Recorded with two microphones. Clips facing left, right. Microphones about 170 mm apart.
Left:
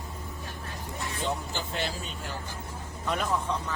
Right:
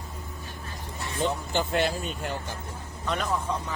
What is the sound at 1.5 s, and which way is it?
Speech, 60° right (ahead or behind).